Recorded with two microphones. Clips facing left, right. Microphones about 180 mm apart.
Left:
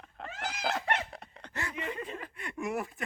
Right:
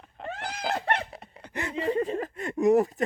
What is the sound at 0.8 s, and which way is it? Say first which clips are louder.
Cat: right 4 dB; 35° right (ahead or behind).